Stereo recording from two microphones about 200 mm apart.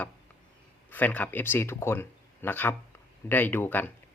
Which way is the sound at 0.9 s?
10° left (ahead or behind).